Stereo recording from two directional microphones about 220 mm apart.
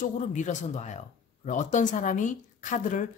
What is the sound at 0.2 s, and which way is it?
Speech, 35° left (ahead or behind).